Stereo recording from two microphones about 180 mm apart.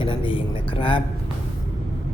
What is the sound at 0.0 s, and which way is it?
Speech, 30° left (ahead or behind).